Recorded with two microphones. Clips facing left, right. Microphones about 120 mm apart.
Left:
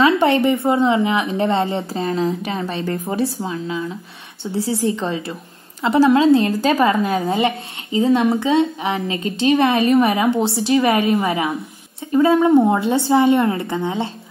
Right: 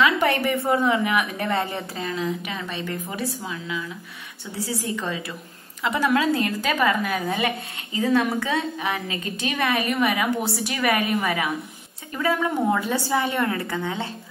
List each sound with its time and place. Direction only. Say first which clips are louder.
0.0 s a woman's voice: left 6 dB; 25° left (ahead or behind)